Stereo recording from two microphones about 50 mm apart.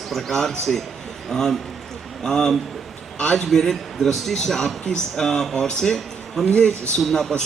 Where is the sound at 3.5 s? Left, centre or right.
Centre.